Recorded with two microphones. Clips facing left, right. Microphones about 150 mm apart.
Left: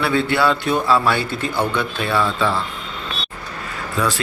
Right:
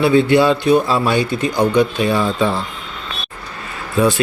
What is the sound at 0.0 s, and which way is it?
A man's voice, 20° right (ahead or behind).